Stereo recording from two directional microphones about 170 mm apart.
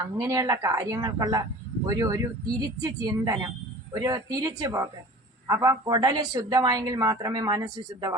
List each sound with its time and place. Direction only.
0.0 s a woman's voice: 20° right (ahead or behind)